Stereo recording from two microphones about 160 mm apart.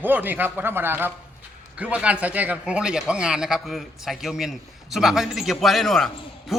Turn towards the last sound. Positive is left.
turn(degrees=0)  # may be behind; listen again after turning